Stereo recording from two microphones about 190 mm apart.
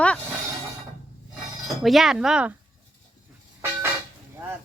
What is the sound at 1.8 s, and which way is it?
Speech, centre (ahead or behind).